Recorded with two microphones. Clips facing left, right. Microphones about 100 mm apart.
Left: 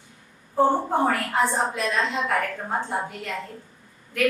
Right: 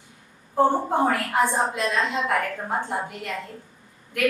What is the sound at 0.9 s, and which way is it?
A woman's voice, 10° right (ahead or behind).